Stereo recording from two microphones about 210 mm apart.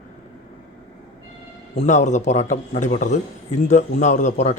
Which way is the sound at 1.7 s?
35° left (ahead or behind).